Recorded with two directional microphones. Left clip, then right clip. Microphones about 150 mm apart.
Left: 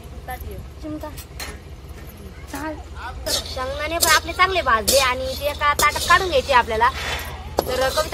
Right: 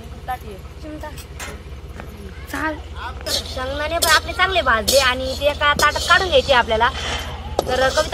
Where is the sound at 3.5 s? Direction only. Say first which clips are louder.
Right 2 dB; 30° left (ahead or behind); by 8.1 s 50° left (ahead or behind).